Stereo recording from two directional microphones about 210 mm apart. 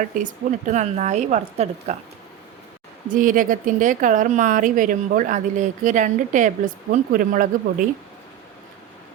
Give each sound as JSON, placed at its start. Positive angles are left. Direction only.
{"t": 0.0, "sound": "speech", "side_deg": -35}
{"t": 3.1, "sound": "speech", "side_deg": -40}